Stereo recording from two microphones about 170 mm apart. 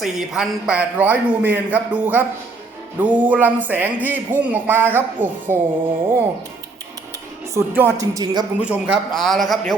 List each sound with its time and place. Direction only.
0.0 s speech: 5° right (ahead or behind)
7.5 s speech: 10° right (ahead or behind)
7.9 s speech: 20° right (ahead or behind)
8.5 s a man's voice: 10° right (ahead or behind)